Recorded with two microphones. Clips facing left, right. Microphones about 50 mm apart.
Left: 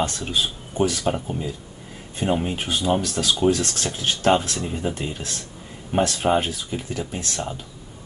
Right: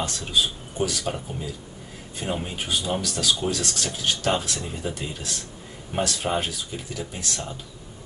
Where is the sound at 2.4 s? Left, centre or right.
Left.